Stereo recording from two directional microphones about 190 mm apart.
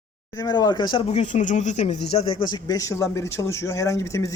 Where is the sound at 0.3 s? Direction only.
20° left (ahead or behind).